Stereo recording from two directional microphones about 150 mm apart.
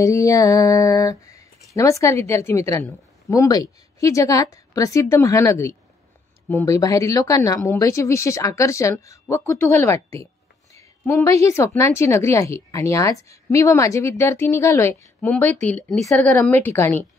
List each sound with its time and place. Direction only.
0.0 s a woman's voice: 20° left (ahead or behind)
11.2 s a woman's voice: 20° left (ahead or behind)